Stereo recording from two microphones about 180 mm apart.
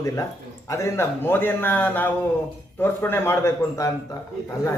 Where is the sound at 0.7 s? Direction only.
15° left (ahead or behind).